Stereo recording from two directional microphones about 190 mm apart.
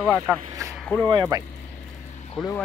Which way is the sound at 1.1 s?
20° right (ahead or behind).